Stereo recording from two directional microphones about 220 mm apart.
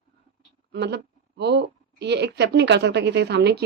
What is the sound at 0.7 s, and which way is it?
A woman's voice, 50° right (ahead or behind).